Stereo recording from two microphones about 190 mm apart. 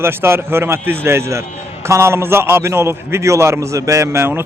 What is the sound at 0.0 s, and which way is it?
A man's voice, 10° right (ahead or behind).